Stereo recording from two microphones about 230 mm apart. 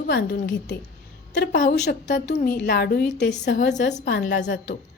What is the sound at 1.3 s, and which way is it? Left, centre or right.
A woman's voice, left.